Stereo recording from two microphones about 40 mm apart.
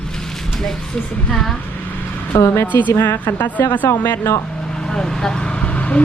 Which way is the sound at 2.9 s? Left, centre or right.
Left.